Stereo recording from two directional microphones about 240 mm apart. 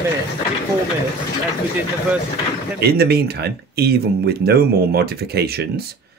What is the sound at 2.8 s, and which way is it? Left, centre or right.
Speech, right.